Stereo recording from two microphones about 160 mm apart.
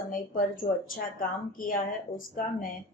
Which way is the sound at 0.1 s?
60° left (ahead or behind).